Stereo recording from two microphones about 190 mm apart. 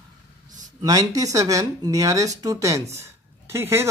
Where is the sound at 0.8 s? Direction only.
20° right (ahead or behind).